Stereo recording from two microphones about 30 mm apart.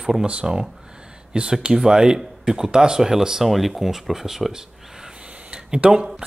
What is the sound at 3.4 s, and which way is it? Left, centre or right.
Speech, centre.